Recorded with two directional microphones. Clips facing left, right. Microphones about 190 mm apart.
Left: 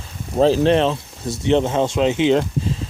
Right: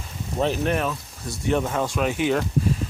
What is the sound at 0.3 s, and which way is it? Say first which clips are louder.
Speech: left 8 dB; 30° left (ahead or behind).